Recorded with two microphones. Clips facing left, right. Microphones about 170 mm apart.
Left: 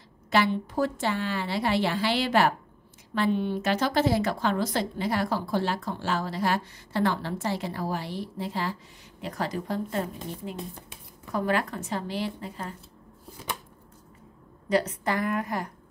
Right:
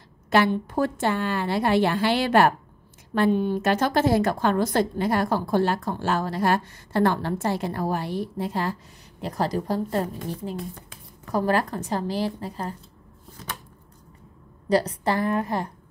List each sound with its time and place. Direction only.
0.3 s a woman's voice: 50° right (ahead or behind)
11.3 s a woman's voice: 40° right (ahead or behind)
14.7 s a woman's voice: 35° right (ahead or behind)